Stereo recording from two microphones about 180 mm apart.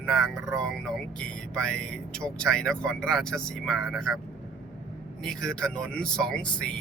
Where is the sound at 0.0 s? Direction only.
5° left (ahead or behind).